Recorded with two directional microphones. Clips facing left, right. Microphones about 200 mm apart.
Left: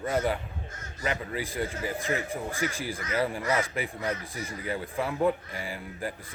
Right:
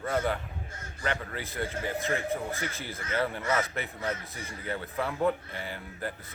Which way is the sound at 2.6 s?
15° left (ahead or behind).